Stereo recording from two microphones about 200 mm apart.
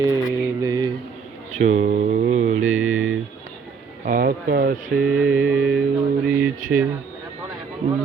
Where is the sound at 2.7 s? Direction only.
90° right.